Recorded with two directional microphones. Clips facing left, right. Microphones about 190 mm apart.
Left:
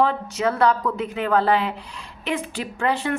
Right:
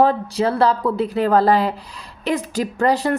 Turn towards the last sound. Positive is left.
turn(degrees=-40)  # may be behind; listen again after turning